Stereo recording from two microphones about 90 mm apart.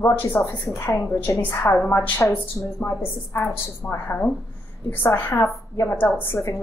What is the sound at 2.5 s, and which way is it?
A man's voice, 30° left (ahead or behind).